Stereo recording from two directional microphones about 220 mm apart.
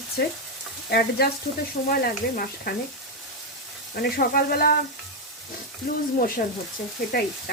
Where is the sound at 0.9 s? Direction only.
45° left (ahead or behind).